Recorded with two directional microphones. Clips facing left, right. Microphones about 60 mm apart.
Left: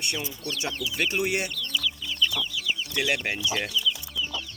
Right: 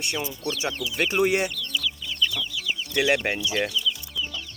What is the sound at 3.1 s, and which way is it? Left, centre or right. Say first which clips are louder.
Speech: right 5 dB; right.